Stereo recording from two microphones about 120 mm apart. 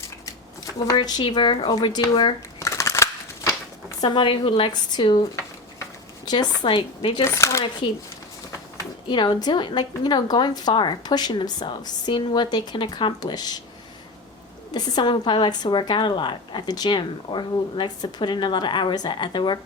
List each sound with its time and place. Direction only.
0.9 s a woman's voice: 40° left (ahead or behind)
2.6 s a sound: 25° left (ahead or behind)
4.0 s a woman's voice: 40° left (ahead or behind)
6.2 s a woman's voice: 40° left (ahead or behind)
7.3 s speech: 25° left (ahead or behind)
9.0 s a woman's voice: 40° left (ahead or behind)
14.7 s a woman's voice: 35° left (ahead or behind)